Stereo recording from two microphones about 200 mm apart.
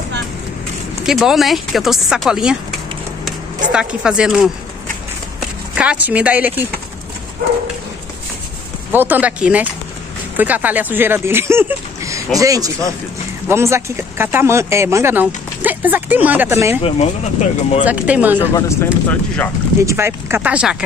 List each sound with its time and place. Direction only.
1.0 s speech: centre (ahead or behind)
3.7 s speech: 5° right (ahead or behind)
5.8 s speech: 5° right (ahead or behind)
8.9 s speech: 10° right (ahead or behind)
16.8 s speech: 35° left (ahead or behind)
17.8 s speech: 5° right (ahead or behind)
18.4 s speech: 15° left (ahead or behind)
19.8 s speech: 15° right (ahead or behind)